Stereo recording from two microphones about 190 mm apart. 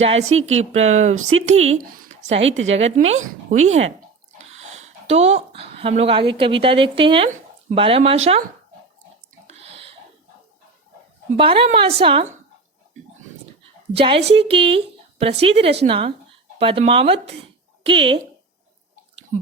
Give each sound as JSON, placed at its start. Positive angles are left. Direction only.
{"t": 0.0, "sound": "speech", "side_deg": -35}
{"t": 1.1, "sound": "speech", "side_deg": -90}
{"t": 1.5, "sound": "speech", "side_deg": -35}
{"t": 1.8, "sound": "a sound", "side_deg": -40}
{"t": 2.4, "sound": "speech", "side_deg": -90}
{"t": 2.6, "sound": "speech", "side_deg": -35}
{"t": 3.2, "sound": "speech", "side_deg": -90}
{"t": 4.5, "sound": "a woman's voice", "side_deg": -35}
{"t": 9.5, "sound": "a sound", "side_deg": -35}
{"t": 11.3, "sound": "speech", "side_deg": -30}
{"t": 13.9, "sound": "speech", "side_deg": -30}